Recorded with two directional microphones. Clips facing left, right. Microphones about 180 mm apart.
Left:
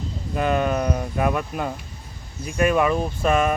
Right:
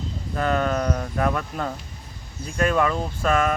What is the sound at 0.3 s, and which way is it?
Speech, 15° left (ahead or behind).